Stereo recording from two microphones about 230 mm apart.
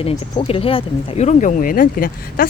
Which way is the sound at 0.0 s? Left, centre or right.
Left.